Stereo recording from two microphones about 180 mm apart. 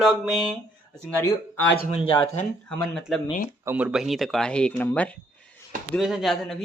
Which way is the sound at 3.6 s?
10° right (ahead or behind).